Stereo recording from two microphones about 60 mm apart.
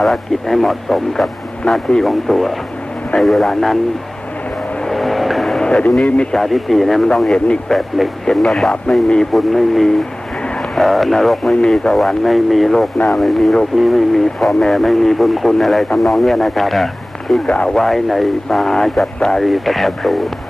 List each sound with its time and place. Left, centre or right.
0.0 s speech: centre
4.9 s vehicle: centre
5.6 s speech: centre
6.3 s speech: centre
17.4 s speech: centre
17.8 s speech: centre